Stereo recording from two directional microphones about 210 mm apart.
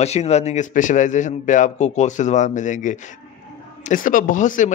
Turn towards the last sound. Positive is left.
turn(degrees=35)  # may be behind; listen again after turning